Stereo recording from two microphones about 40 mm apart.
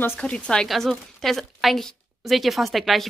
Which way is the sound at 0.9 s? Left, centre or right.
Centre.